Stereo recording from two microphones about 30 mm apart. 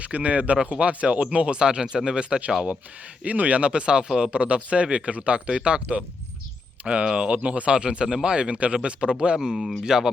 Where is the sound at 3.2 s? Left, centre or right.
Right.